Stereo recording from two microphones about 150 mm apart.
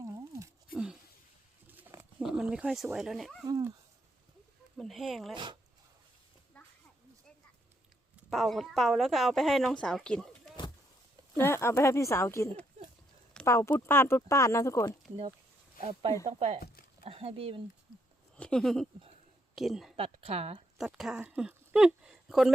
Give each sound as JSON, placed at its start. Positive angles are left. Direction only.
{"t": 0.0, "sound": "a sound", "side_deg": -20}
{"t": 0.7, "sound": "a sound", "side_deg": -5}
{"t": 2.2, "sound": "speech", "side_deg": -5}
{"t": 3.4, "sound": "speech", "side_deg": -25}
{"t": 4.8, "sound": "speech", "side_deg": 0}
{"t": 5.3, "sound": "speech", "side_deg": -30}
{"t": 6.5, "sound": "a sound", "side_deg": 10}
{"t": 8.3, "sound": "speech", "side_deg": 0}
{"t": 11.3, "sound": "speech", "side_deg": 15}
{"t": 15.8, "sound": "speech", "side_deg": -40}
{"t": 18.3, "sound": "speech", "side_deg": 5}
{"t": 20.0, "sound": "speech", "side_deg": -40}
{"t": 20.7, "sound": "speech", "side_deg": -5}